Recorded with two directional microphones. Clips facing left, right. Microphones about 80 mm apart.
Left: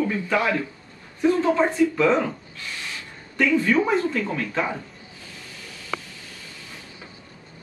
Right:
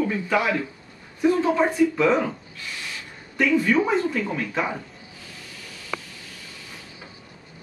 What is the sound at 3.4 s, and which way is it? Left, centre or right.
Speech, centre.